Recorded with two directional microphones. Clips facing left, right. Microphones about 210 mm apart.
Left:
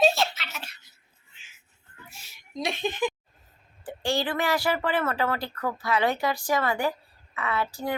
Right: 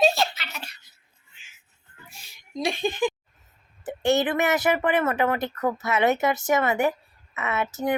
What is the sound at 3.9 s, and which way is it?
Speech, 20° right (ahead or behind).